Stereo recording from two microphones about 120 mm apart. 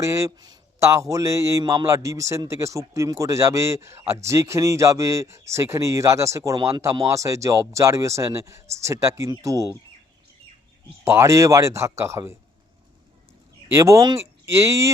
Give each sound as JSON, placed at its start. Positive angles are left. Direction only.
{"t": 0.0, "sound": "a man's voice", "side_deg": -25}
{"t": 11.0, "sound": "a man's voice", "side_deg": -25}
{"t": 13.7, "sound": "a man's voice", "side_deg": -25}